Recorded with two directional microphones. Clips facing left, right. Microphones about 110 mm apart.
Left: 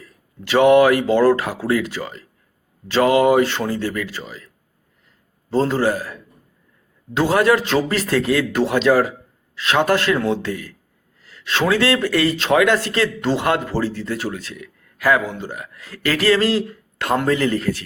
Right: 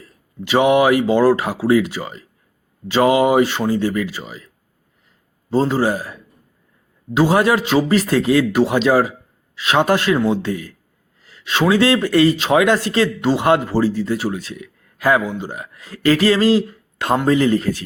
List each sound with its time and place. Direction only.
0.4 s speech: 15° right (ahead or behind)
5.5 s speech: 15° right (ahead or behind)